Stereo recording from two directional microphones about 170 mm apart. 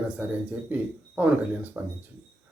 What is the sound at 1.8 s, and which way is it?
Speech, 10° right (ahead or behind).